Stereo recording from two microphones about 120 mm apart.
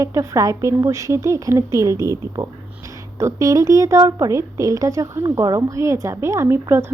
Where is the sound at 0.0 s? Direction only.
25° right (ahead or behind).